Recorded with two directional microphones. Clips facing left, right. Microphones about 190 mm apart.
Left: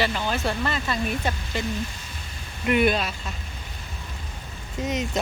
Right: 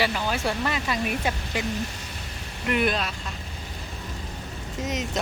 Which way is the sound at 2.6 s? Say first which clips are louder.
Left 3 dB; centre (ahead or behind).